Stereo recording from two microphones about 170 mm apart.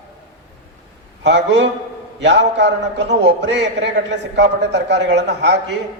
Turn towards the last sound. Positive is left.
turn(degrees=-90)